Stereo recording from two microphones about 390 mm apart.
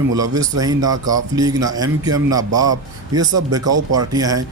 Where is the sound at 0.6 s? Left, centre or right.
Centre.